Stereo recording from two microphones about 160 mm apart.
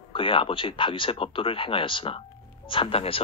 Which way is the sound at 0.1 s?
35° left (ahead or behind).